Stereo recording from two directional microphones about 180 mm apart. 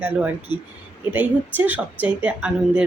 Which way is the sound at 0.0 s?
10° right (ahead or behind).